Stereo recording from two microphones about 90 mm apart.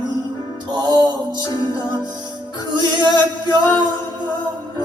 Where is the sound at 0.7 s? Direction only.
55° right (ahead or behind).